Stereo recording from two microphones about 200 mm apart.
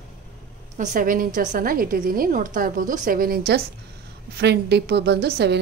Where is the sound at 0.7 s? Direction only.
45° right (ahead or behind).